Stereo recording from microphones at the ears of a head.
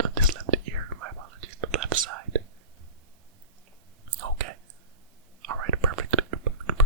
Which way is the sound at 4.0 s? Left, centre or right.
Right.